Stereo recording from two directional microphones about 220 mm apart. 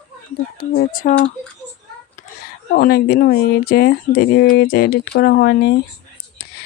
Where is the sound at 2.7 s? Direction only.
45° left (ahead or behind).